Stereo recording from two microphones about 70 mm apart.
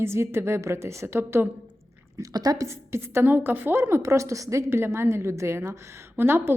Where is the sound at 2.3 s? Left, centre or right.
Right.